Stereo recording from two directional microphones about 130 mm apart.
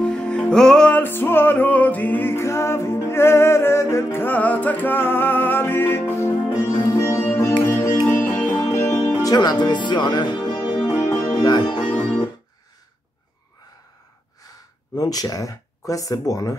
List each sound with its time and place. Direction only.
0.0 s music: 5° left (ahead or behind)
9.2 s speech: 30° left (ahead or behind)
10.8 s music: 30° left (ahead or behind)
15.0 s speech: 30° left (ahead or behind)